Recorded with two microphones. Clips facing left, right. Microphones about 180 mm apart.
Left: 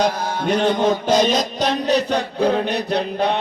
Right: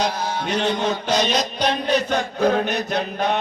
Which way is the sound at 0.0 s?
50° left (ahead or behind).